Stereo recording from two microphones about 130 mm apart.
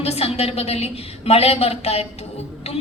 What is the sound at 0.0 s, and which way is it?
A woman's voice, 50° left (ahead or behind).